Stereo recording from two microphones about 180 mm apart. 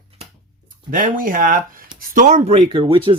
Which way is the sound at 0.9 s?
50° right (ahead or behind).